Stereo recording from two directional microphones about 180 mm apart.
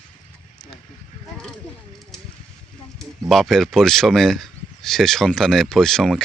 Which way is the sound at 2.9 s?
Centre (ahead or behind).